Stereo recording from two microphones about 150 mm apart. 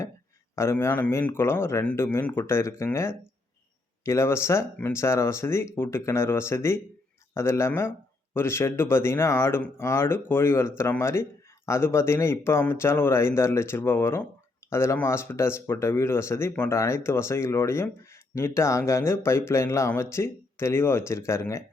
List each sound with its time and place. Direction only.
0.5 s speech: 20° left (ahead or behind)